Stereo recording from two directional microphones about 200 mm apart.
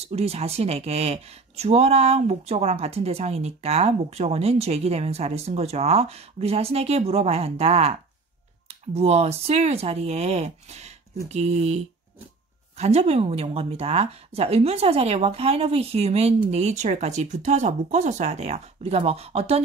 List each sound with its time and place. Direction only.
0.0 s speech: 30° right (ahead or behind)